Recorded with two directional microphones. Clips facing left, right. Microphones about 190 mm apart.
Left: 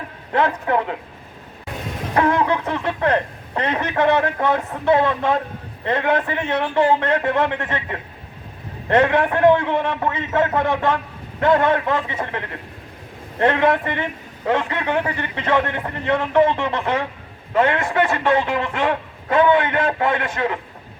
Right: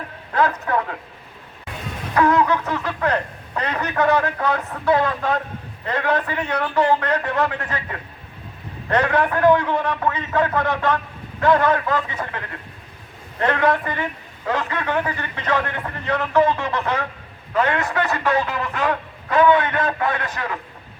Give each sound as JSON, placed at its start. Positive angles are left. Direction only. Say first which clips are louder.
{"t": 0.3, "sound": "a man's voice", "louder": "left 1 dB", "side_deg": 25}
{"t": 2.1, "sound": "a man's voice", "louder": "right 1 dB", "side_deg": 30}
{"t": 13.4, "sound": "a man's voice", "louder": "left 2 dB", "side_deg": 25}